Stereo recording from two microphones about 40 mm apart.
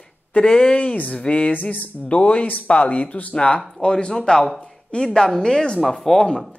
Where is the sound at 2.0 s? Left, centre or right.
Left.